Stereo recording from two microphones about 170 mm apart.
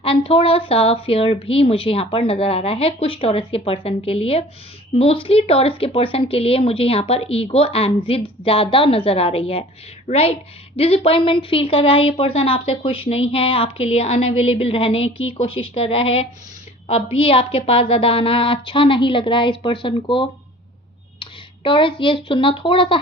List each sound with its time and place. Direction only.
0.0 s a woman's voice: 35° left (ahead or behind)